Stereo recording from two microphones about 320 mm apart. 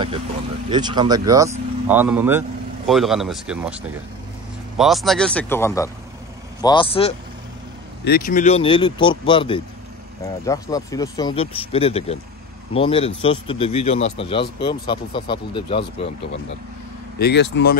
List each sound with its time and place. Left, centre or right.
0.7 s speech: centre
17.2 s speech: left